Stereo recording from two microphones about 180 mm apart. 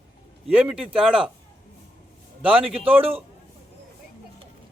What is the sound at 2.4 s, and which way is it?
Speech, 10° right (ahead or behind).